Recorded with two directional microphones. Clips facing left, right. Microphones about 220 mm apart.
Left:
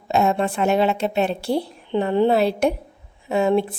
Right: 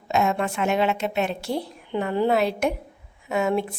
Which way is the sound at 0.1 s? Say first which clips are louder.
Left 3 dB; 35° left (ahead or behind).